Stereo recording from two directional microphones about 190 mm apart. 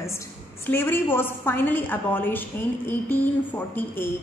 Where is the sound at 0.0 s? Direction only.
15° left (ahead or behind).